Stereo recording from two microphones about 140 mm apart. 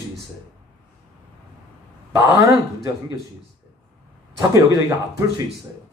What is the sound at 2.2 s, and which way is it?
Speech, 20° right (ahead or behind).